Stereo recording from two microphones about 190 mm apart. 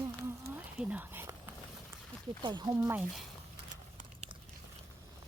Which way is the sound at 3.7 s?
40° right (ahead or behind).